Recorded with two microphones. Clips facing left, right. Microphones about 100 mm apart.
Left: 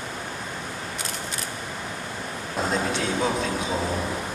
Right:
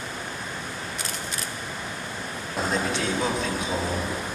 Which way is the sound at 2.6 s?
30° left (ahead or behind).